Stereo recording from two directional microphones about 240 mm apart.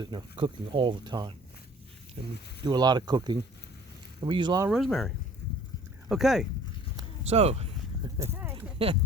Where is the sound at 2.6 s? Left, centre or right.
Centre.